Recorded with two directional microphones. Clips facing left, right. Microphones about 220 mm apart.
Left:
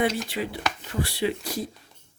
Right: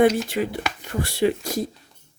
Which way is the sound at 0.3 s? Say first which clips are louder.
Right 4 dB; 50° right (ahead or behind).